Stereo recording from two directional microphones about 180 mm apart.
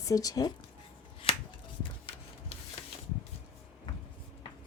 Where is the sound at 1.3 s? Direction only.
30° left (ahead or behind).